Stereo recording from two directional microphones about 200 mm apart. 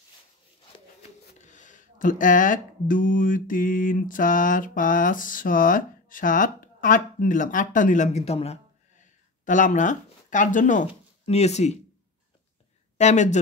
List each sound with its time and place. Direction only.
1.4 s speech: 40° left (ahead or behind)
12.9 s speech: 35° left (ahead or behind)